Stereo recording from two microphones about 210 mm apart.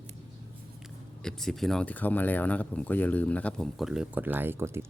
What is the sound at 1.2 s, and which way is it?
Speech, centre (ahead or behind).